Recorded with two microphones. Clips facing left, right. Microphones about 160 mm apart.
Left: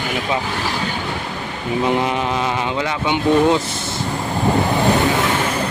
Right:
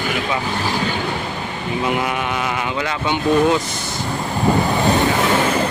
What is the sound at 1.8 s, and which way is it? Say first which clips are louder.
Speech: left 3 dB; 25° left (ahead or behind).